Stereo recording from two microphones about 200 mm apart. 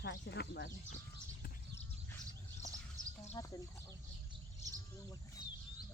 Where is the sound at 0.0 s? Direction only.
55° left (ahead or behind).